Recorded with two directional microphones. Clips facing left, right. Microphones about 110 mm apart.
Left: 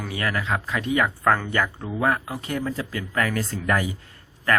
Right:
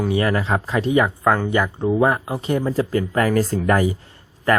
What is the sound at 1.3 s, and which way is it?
Speech, 15° right (ahead or behind).